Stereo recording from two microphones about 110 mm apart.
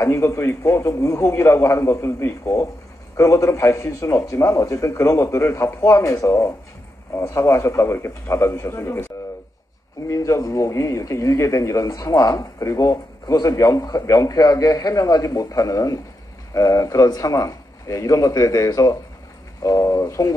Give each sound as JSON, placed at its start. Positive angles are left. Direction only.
{"t": 0.0, "sound": "a man's voice", "side_deg": 25}
{"t": 10.0, "sound": "a man's voice", "side_deg": 30}